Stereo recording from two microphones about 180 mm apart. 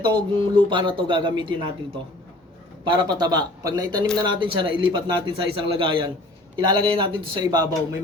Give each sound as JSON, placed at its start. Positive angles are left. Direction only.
{"t": 0.0, "sound": "a man's voice", "side_deg": -25}
{"t": 2.8, "sound": "a man's voice", "side_deg": -25}